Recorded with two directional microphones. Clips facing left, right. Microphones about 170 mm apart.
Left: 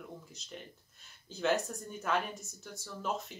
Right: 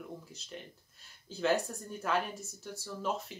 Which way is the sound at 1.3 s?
Centre (ahead or behind).